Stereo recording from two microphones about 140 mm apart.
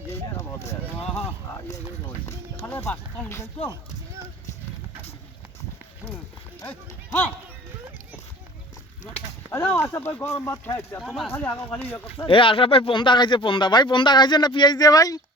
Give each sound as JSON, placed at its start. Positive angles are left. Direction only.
{"t": 0.1, "sound": "a sound", "side_deg": 20}
{"t": 2.0, "sound": "speech", "side_deg": 15}
{"t": 9.5, "sound": "speech", "side_deg": 15}
{"t": 11.0, "sound": "speech", "side_deg": 0}
{"t": 11.3, "sound": "speech", "side_deg": 15}
{"t": 12.0, "sound": "speech", "side_deg": 40}